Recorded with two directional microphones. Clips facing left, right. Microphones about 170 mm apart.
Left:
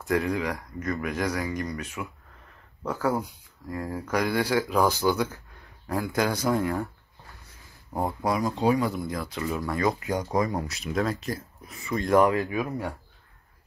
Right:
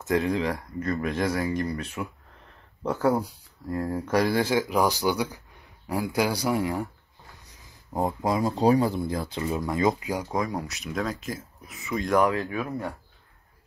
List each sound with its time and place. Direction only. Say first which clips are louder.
0.0 s speech: right 1 dB; 20° right (ahead or behind)
2.8 s speech: right 3 dB; 10° right (ahead or behind)
3.6 s speech: right 4 dB; 35° right (ahead or behind); by 6.9 s 15° right (ahead or behind)
7.9 s speech: right 1 dB; 20° right (ahead or behind)
10.0 s speech: left 2 dB; 5° right (ahead or behind)